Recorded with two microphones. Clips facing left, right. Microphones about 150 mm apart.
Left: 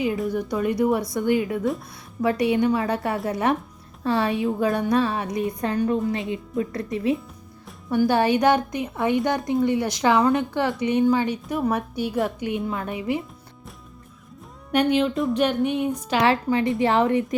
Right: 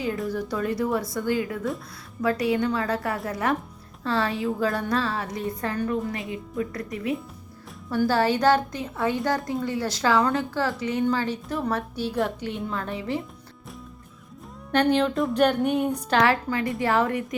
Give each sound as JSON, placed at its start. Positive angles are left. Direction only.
{"t": 0.3, "sound": "a woman's voice", "side_deg": 15}
{"t": 14.9, "sound": "a sound", "side_deg": 0}
{"t": 16.2, "sound": "a woman's voice", "side_deg": 25}